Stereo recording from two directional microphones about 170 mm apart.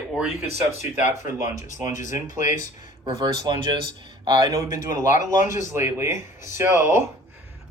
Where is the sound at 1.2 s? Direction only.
45° left (ahead or behind).